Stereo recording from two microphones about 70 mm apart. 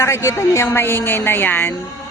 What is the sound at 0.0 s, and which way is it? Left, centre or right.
A woman's voice, left.